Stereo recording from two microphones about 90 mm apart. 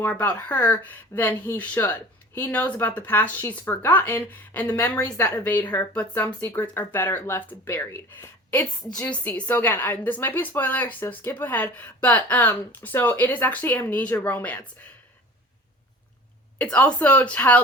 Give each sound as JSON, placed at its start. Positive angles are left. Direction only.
{"t": 0.0, "sound": "a woman's voice", "side_deg": 20}
{"t": 6.2, "sound": "a woman's voice", "side_deg": 25}
{"t": 8.4, "sound": "a woman's voice", "side_deg": 15}
{"t": 16.6, "sound": "a woman's voice", "side_deg": 15}